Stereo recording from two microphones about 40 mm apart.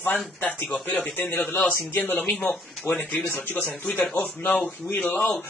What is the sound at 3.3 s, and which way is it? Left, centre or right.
Speech, left.